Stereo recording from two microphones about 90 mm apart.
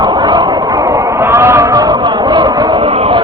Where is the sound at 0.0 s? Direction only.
55° right (ahead or behind); by 1.0 s 40° right (ahead or behind).